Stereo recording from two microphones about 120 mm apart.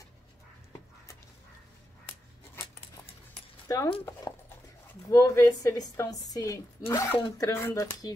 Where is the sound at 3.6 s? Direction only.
25° left (ahead or behind).